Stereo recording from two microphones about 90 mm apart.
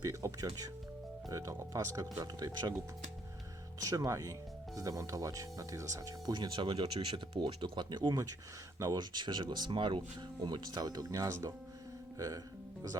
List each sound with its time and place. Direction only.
0.0 s speech: 40° right (ahead or behind)
3.8 s speech: 40° right (ahead or behind)
6.3 s speech: 60° right (ahead or behind); by 11.5 s 35° right (ahead or behind)